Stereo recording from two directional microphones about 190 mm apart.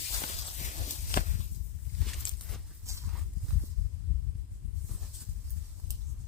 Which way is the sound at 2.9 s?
15° right (ahead or behind).